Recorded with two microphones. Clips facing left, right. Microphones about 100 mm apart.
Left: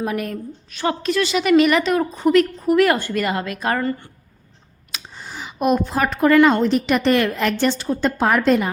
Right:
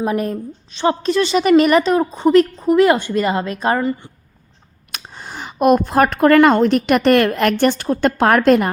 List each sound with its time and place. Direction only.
0.0 s a woman's voice: 30° right (ahead or behind)
3.8 s a woman's voice: 15° right (ahead or behind)
4.9 s speech: 50° right (ahead or behind)